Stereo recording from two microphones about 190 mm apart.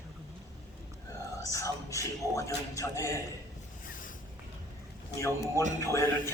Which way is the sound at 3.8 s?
45° left (ahead or behind).